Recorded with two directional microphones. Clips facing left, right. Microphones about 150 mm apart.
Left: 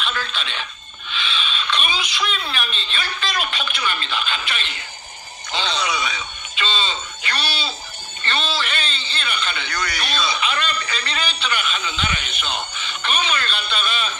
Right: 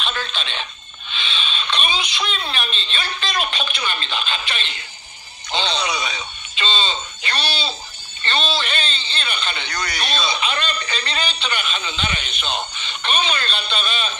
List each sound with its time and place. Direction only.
0.0 s frog: 25° right (ahead or behind)
1.1 s speech: 25° right (ahead or behind)
8.3 s a sound: 25° right (ahead or behind)